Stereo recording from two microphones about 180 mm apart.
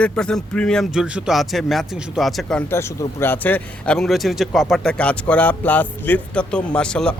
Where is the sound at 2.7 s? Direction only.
15° left (ahead or behind).